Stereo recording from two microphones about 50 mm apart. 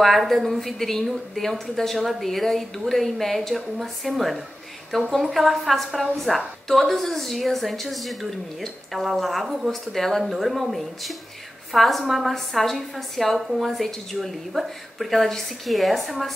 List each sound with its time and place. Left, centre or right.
0.0 s a woman's voice: centre